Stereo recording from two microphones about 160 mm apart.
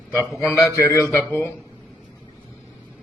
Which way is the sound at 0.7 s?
20° left (ahead or behind).